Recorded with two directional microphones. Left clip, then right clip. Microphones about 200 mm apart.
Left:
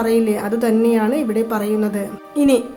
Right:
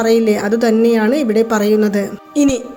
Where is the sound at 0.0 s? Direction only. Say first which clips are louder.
Right 4 dB; 20° right (ahead or behind).